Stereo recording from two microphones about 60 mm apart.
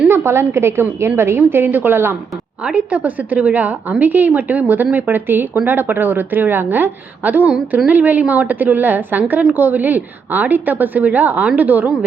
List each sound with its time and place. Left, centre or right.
0.1 s a woman's voice: right
1.4 s a woman's voice: right
2.6 s a woman's voice: right